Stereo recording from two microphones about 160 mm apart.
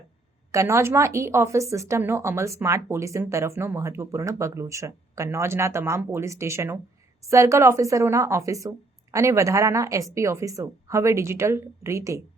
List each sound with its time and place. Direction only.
0.5 s a woman's voice: 20° right (ahead or behind)